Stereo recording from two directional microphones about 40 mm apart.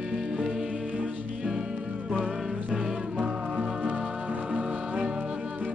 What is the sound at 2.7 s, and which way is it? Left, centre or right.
Music, right.